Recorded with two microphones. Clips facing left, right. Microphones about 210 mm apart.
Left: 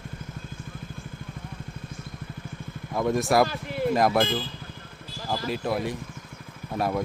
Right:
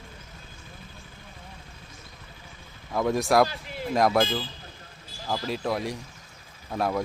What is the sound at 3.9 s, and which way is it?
Speech, centre (ahead or behind).